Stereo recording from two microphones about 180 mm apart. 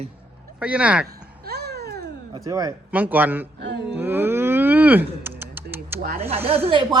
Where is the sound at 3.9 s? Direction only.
10° right (ahead or behind).